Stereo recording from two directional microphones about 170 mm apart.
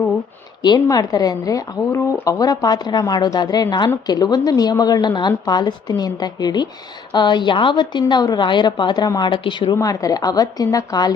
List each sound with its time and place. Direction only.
0.6 s a woman's voice: 25° left (ahead or behind)